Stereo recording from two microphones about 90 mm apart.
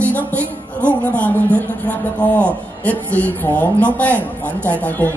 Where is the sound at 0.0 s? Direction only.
20° left (ahead or behind).